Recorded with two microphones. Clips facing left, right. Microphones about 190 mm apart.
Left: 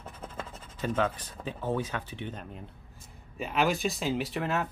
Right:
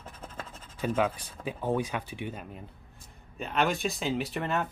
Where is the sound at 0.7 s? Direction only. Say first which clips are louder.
Right 1 dB; 10° right (ahead or behind).